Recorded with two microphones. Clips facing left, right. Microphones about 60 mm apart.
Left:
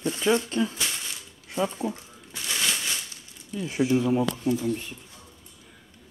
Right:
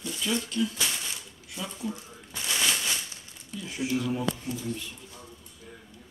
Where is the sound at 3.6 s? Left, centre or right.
Left.